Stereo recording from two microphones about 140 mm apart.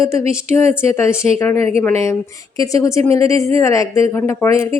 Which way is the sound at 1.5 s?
50° right (ahead or behind).